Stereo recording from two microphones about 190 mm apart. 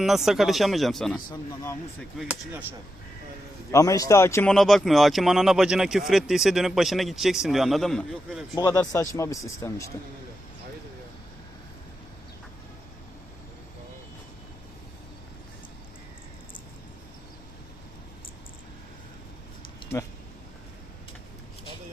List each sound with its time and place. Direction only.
0.0 s speech: centre (ahead or behind)
3.7 s speech: 15° left (ahead or behind)
4.5 s speech: centre (ahead or behind)
8.5 s speech: 20° left (ahead or behind)